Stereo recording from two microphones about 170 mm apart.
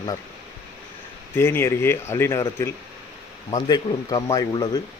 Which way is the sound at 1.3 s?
15° left (ahead or behind).